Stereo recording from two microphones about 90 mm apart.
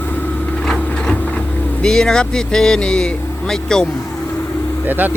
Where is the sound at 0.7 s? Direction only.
10° left (ahead or behind).